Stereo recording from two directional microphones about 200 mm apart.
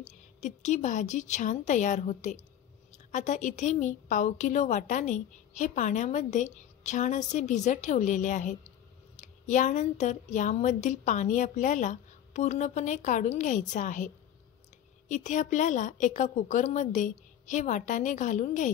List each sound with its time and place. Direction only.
0.1 s a woman's voice: 35° left (ahead or behind)